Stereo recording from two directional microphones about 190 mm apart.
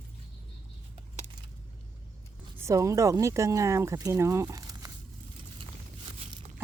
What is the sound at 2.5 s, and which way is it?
Speech, 15° right (ahead or behind).